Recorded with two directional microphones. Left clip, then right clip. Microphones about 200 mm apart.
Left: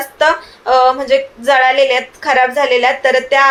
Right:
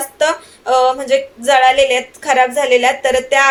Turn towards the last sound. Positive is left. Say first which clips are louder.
# left 2 dB
turn(degrees=0)  # may be behind; listen again after turning